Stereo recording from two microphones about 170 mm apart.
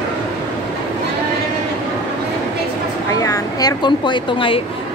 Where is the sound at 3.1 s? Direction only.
20° left (ahead or behind).